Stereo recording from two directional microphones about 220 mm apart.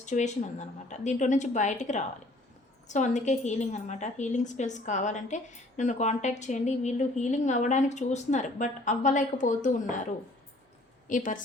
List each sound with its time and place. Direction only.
0.0 s speech: 35° left (ahead or behind)
11.1 s speech: 35° left (ahead or behind)